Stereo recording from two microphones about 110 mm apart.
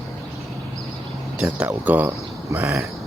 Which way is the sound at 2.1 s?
20° right (ahead or behind).